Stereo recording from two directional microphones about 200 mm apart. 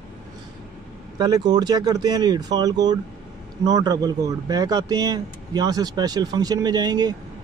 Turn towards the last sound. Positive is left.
turn(degrees=-20)  # may be behind; listen again after turning